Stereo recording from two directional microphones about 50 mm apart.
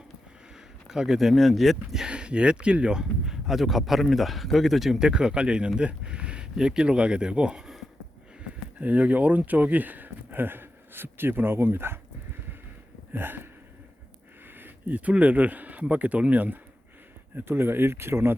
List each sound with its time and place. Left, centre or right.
0.5 s speech: centre
2.0 s speech: right
8.4 s speech: right
13.1 s a sound: right
14.4 s speech: right
17.3 s speech: right